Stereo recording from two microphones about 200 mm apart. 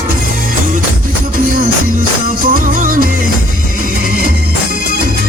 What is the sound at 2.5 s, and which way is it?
Music, 45° right (ahead or behind).